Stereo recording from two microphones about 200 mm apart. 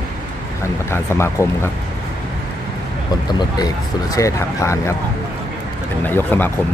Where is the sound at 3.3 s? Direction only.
20° left (ahead or behind).